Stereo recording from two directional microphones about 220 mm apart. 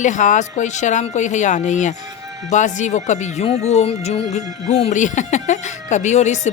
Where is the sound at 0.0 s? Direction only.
35° left (ahead or behind).